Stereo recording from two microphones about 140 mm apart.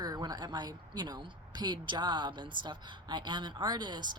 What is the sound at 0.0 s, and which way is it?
Speech, 30° right (ahead or behind).